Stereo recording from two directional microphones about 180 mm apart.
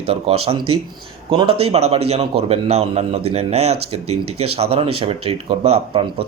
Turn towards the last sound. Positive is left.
turn(degrees=-30)  # may be behind; listen again after turning